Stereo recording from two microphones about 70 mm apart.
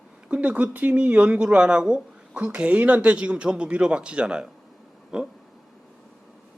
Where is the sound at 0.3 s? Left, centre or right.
Centre.